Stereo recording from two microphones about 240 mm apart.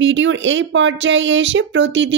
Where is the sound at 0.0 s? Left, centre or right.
Right.